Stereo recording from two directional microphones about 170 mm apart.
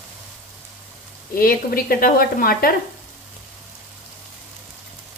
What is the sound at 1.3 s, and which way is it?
Speech, 60° left (ahead or behind).